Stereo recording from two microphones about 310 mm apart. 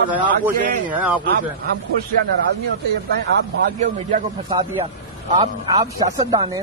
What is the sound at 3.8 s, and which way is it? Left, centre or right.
Speech, centre.